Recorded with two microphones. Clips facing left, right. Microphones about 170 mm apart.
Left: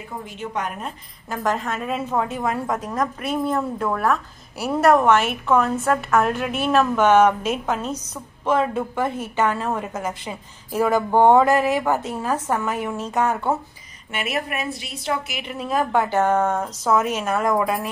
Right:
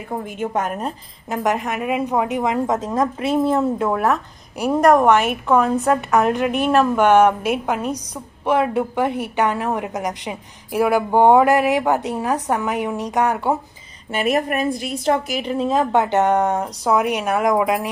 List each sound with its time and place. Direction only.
0.4 s a woman's voice: 45° right (ahead or behind)
1.3 s a woman's voice: 20° right (ahead or behind)
14.1 s a woman's voice: 40° right (ahead or behind); by 17.8 s 15° right (ahead or behind)